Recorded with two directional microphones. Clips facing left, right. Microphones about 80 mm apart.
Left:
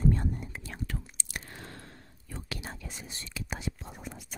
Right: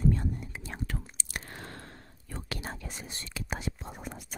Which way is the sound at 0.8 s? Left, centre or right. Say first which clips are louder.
Right 1 dB; right.